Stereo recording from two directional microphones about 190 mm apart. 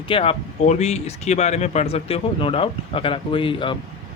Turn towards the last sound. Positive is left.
turn(degrees=25)  # may be behind; listen again after turning